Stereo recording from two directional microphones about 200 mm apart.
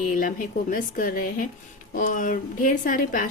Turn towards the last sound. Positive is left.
turn(degrees=45)  # may be behind; listen again after turning